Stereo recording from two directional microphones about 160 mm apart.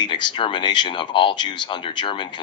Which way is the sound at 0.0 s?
30° left (ahead or behind).